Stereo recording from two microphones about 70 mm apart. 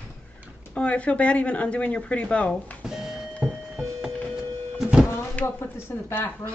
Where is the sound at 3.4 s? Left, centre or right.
Right.